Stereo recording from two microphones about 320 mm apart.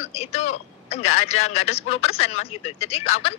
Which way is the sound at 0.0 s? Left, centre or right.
Centre.